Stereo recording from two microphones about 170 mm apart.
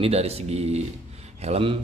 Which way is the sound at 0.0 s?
35° right (ahead or behind).